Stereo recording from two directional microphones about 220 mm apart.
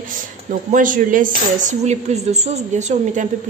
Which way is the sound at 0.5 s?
35° right (ahead or behind).